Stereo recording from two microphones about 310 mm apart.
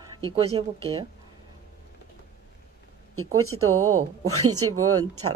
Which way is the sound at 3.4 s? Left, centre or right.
Right.